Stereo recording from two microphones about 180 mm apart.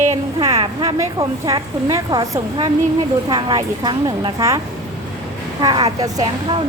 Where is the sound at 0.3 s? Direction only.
25° right (ahead or behind).